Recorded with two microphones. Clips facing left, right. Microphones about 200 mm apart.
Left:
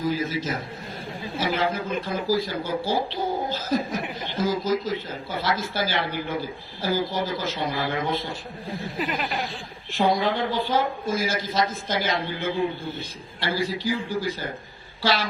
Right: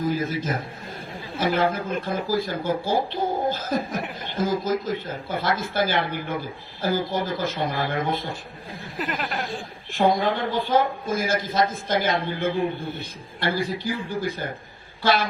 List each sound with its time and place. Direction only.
0.3 s speech: 55° right (ahead or behind)
9.0 s speech: centre (ahead or behind)
9.9 s speech: 50° right (ahead or behind)